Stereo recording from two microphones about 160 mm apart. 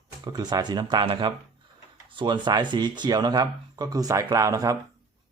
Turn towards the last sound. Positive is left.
turn(degrees=-20)  # may be behind; listen again after turning